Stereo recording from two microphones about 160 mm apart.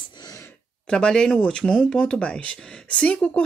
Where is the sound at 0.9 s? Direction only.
5° left (ahead or behind).